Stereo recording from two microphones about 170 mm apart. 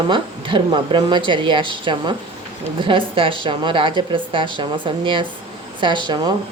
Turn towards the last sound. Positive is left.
turn(degrees=-25)  # may be behind; listen again after turning